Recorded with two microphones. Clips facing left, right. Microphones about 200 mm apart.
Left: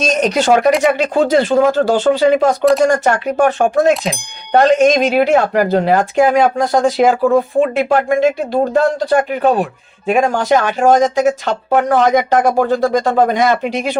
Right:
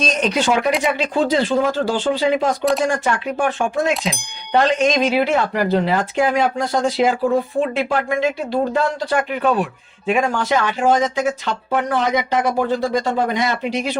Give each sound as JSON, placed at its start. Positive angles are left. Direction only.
{"t": 0.0, "sound": "speech", "side_deg": 45}